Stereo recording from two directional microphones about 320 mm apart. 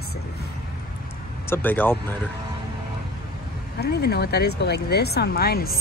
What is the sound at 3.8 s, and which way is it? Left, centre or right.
Speech, left.